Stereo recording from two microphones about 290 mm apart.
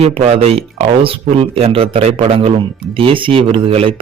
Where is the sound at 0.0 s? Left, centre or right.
Right.